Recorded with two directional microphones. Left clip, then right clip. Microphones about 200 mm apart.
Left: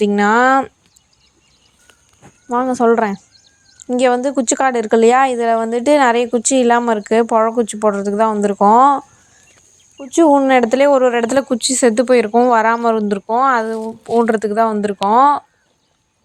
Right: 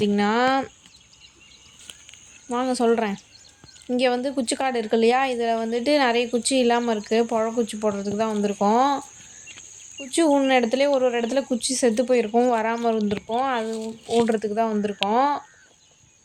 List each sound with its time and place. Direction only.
0.0 s speech: 15° left (ahead or behind)
2.5 s speech: 15° left (ahead or behind)
10.1 s speech: 15° left (ahead or behind)